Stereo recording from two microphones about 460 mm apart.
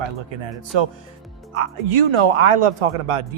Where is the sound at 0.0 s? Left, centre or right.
Right.